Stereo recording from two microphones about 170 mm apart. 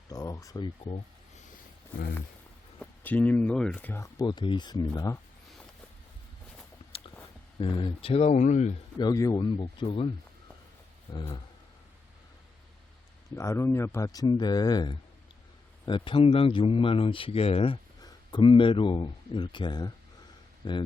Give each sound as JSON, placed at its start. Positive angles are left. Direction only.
{"t": 0.1, "sound": "a sound", "side_deg": 20}
{"t": 2.7, "sound": "speech", "side_deg": 10}
{"t": 6.9, "sound": "a sound", "side_deg": 35}
{"t": 7.6, "sound": "speech", "side_deg": 30}
{"t": 9.0, "sound": "speech", "side_deg": 20}
{"t": 11.1, "sound": "speech", "side_deg": 25}
{"t": 13.3, "sound": "speech", "side_deg": 15}